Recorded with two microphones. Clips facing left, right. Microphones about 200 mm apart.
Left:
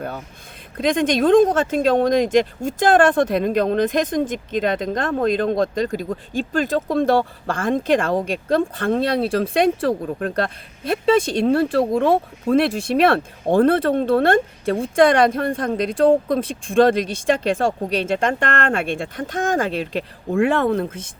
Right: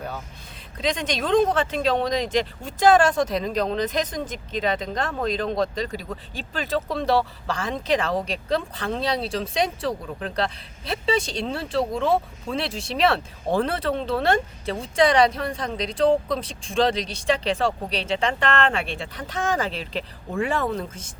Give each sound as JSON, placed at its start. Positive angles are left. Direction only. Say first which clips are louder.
{"t": 0.8, "sound": "speech", "louder": "left 8 dB", "side_deg": 50}